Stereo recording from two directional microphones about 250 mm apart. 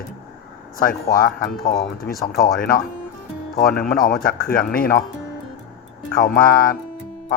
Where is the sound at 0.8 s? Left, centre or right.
Left.